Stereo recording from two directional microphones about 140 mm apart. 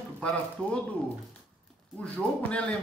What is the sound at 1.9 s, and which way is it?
Speech, 10° left (ahead or behind).